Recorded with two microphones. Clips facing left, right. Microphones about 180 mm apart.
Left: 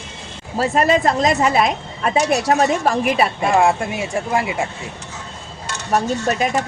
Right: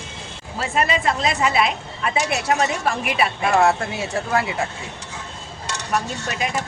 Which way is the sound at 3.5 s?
15° left (ahead or behind).